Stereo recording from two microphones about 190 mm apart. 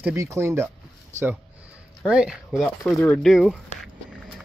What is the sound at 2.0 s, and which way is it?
Speech, 5° right (ahead or behind).